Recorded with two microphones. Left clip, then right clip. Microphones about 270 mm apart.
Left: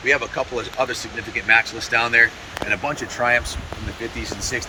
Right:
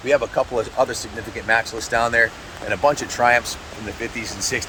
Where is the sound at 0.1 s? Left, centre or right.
Right.